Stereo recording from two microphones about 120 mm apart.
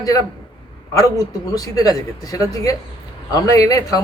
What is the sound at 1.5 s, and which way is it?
Speech, 30° left (ahead or behind).